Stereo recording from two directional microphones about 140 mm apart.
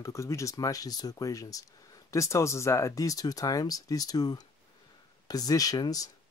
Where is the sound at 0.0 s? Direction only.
20° left (ahead or behind).